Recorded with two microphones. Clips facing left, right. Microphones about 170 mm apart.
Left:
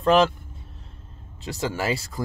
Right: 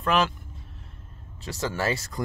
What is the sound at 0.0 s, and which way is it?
Speech, 30° left (ahead or behind).